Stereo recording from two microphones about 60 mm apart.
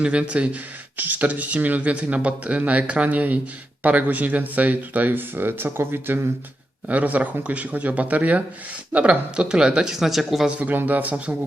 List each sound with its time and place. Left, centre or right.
0.0 s speech: centre; by 6.2 s right
6.8 s speech: right; by 10.5 s centre
10.5 s speech: right